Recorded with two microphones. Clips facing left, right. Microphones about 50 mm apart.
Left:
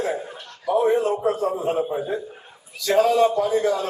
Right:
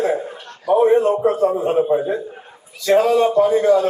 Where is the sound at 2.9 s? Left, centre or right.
Right.